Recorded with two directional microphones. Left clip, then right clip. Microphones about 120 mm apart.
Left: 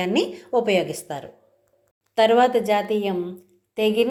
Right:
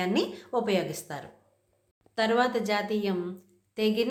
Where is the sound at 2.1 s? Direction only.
30° left (ahead or behind).